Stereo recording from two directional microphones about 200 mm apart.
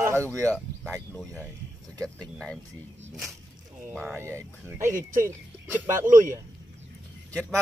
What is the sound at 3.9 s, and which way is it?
Speech, centre (ahead or behind).